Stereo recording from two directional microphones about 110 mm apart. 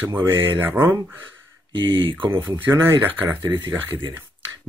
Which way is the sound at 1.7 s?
50° right (ahead or behind).